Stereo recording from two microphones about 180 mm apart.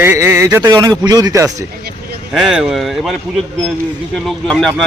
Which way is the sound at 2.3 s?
Centre (ahead or behind).